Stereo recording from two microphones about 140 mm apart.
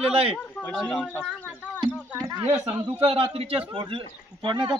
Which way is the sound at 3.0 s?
45° right (ahead or behind).